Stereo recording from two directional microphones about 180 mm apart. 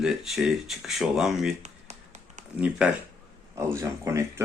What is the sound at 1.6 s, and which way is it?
Tap, 40° right (ahead or behind).